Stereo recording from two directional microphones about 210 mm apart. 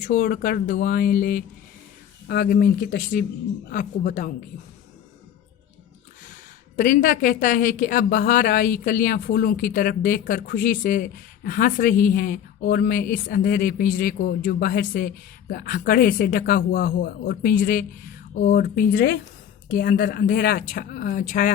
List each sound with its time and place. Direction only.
0.0 s a woman's voice: 40° left (ahead or behind)
6.2 s a woman's voice: 35° left (ahead or behind)